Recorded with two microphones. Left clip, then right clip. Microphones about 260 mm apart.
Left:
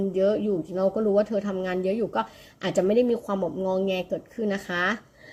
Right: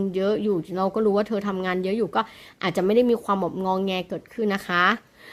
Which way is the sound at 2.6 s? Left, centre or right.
Right.